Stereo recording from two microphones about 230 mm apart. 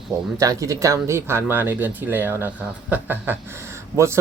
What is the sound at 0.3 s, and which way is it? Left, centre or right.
Speech, centre.